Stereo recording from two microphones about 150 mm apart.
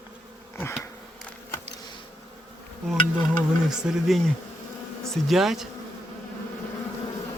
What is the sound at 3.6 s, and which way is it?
Speech, 5° right (ahead or behind).